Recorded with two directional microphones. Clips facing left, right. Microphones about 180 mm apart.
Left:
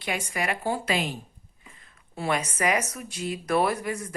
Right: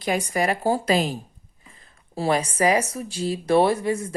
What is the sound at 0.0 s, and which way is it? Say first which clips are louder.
A woman's voice: right 7 dB; 40° right (ahead or behind).